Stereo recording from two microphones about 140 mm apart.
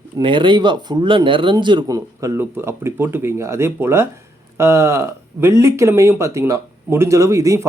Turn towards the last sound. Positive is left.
turn(degrees=-20)  # may be behind; listen again after turning